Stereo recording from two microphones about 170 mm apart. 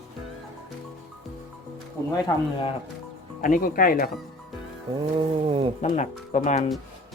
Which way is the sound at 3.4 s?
55° left (ahead or behind).